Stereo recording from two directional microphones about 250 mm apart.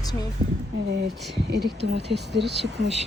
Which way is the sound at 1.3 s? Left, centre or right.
Right.